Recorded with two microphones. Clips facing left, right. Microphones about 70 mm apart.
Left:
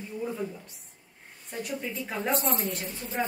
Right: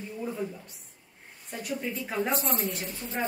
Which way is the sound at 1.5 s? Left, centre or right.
Centre.